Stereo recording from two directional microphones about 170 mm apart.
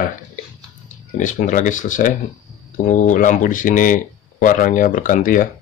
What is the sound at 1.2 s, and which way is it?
Speech, 45° left (ahead or behind).